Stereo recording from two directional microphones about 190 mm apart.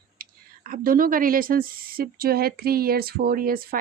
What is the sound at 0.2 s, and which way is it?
Speech, 50° right (ahead or behind).